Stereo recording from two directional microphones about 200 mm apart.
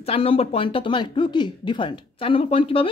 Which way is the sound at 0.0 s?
30° left (ahead or behind).